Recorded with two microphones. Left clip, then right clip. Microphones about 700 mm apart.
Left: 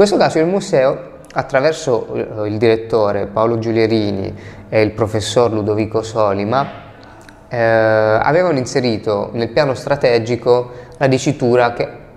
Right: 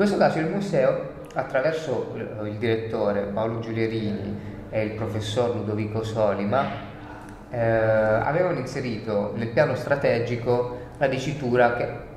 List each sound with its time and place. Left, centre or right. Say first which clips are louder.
0.0 s speech: left 9 dB; left